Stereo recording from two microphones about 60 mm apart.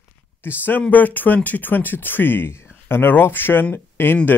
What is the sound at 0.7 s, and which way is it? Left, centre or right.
Speech, left.